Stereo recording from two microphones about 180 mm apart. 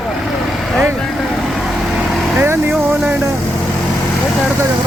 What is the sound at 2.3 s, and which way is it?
Speech, 15° right (ahead or behind).